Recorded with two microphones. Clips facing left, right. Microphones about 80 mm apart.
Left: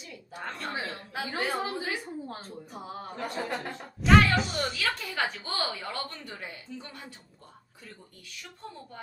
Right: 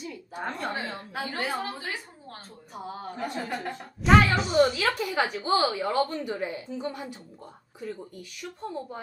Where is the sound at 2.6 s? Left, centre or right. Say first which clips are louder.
Right 6 dB; centre.